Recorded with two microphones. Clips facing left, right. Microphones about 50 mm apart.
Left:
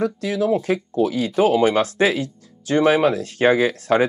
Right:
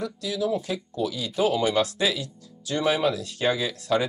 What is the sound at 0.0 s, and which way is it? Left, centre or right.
Speech, left.